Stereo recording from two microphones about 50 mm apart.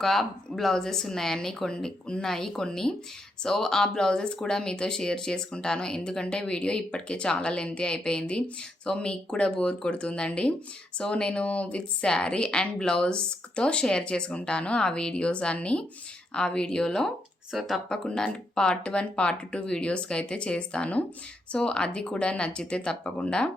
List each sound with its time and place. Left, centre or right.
0.0 s speech: centre
17.5 s speech: centre
17.8 s speech: centre